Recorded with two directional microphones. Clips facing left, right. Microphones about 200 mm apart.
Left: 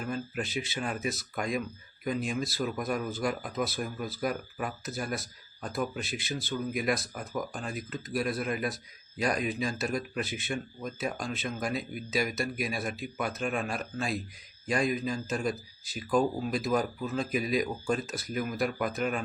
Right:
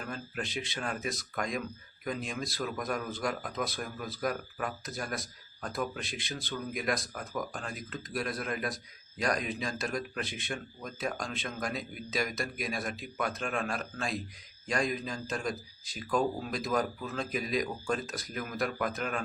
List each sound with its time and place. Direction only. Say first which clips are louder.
0.1 s a man's voice: left 5 dB; 5° left (ahead or behind)